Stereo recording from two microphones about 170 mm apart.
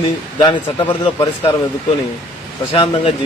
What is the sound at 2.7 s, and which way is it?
Speech, 35° left (ahead or behind).